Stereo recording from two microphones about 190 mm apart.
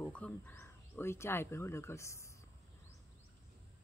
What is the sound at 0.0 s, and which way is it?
Speech, 10° left (ahead or behind).